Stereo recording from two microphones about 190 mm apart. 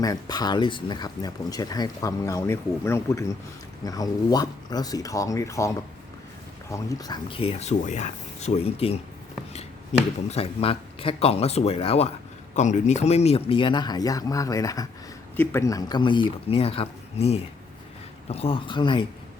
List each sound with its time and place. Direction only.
0.0 s speech: 20° left (ahead or behind)
10.2 s speech: 30° left (ahead or behind)